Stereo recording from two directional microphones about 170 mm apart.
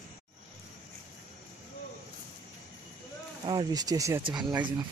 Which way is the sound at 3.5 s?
25° right (ahead or behind).